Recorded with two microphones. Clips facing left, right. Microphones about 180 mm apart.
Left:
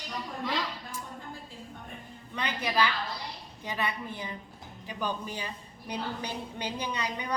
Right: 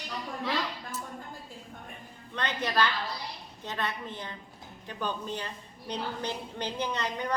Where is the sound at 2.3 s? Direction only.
10° left (ahead or behind).